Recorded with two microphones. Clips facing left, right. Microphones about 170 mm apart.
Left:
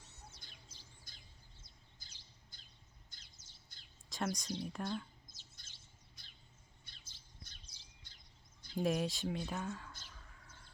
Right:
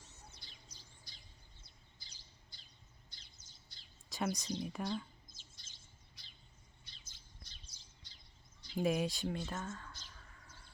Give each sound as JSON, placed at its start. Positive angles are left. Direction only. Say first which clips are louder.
{"t": 0.4, "sound": "chirp", "louder": "even", "side_deg": 50}
{"t": 1.1, "sound": "bird", "louder": "even", "side_deg": 50}
{"t": 4.1, "sound": "speech", "louder": "right 1 dB", "side_deg": 0}
{"t": 8.7, "sound": "speech", "louder": "right 1 dB", "side_deg": 0}
{"t": 9.4, "sound": "a sound", "louder": "left 1 dB", "side_deg": 10}